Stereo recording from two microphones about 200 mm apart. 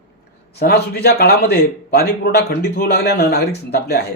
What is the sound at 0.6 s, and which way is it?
A man's voice, 50° left (ahead or behind).